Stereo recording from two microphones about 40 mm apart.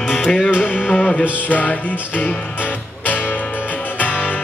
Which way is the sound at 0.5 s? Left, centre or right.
Left.